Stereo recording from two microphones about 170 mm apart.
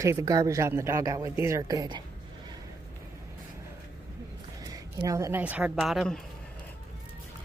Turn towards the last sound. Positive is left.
turn(degrees=0)  # may be behind; listen again after turning